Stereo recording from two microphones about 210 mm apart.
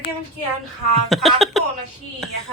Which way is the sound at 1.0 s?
Centre (ahead or behind).